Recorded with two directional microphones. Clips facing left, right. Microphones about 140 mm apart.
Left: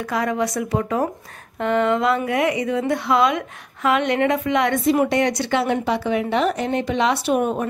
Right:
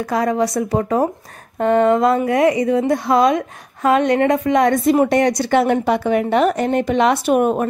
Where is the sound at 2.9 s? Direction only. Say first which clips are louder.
Right 1 dB; 40° right (ahead or behind).